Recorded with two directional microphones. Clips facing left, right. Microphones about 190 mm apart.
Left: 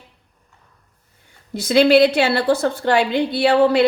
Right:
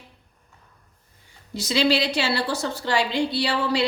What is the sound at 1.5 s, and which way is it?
A woman's voice, 55° left (ahead or behind).